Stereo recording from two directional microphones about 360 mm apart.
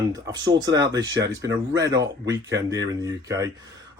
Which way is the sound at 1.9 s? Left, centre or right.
Right.